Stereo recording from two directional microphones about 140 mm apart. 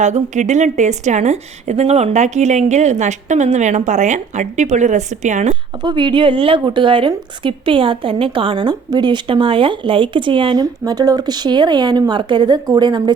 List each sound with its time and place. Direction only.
0.0 s a woman's voice: 60° right (ahead or behind)
5.8 s a woman's voice: 35° right (ahead or behind)